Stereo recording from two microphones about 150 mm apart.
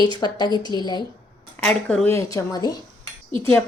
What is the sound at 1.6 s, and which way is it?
Speech, 5° left (ahead or behind).